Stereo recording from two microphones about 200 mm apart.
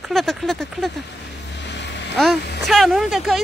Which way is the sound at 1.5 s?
60° left (ahead or behind).